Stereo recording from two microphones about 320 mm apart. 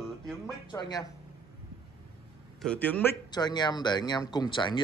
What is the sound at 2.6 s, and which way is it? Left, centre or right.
A man's voice, centre.